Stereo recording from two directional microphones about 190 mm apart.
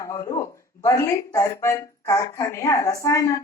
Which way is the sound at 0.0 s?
15° left (ahead or behind).